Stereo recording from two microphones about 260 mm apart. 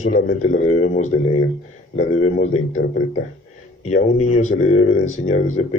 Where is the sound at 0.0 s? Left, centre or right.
Left.